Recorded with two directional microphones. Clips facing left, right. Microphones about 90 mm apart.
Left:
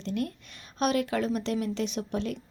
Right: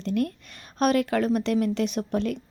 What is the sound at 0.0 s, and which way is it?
Speech, 55° right (ahead or behind).